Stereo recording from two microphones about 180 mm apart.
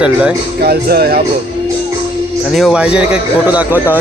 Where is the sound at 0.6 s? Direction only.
60° right (ahead or behind).